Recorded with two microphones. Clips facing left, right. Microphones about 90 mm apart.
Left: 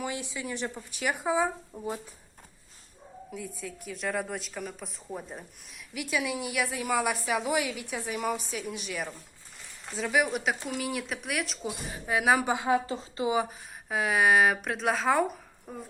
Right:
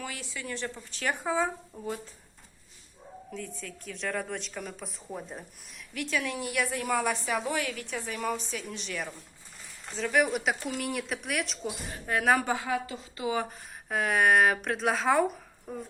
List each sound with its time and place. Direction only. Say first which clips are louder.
0.0 s a woman's voice: left 4 dB; 20° left (ahead or behind)
3.3 s speech: left 1 dB; 10° left (ahead or behind)
5.9 s a woman's voice: left 1 dB; 10° left (ahead or behind)
12.5 s a woman's voice: left 4 dB; 20° left (ahead or behind)
13.3 s speech: left 3 dB; 5° left (ahead or behind)